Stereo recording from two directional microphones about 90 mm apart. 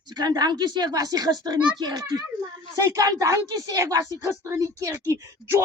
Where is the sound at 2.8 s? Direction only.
40° right (ahead or behind).